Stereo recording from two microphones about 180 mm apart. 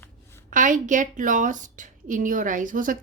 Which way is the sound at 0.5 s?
45° right (ahead or behind).